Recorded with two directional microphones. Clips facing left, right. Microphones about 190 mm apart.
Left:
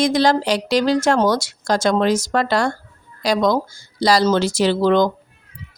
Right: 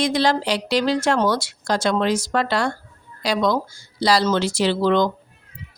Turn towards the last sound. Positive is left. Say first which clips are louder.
# left 3 dB
turn(degrees=45)  # may be behind; listen again after turning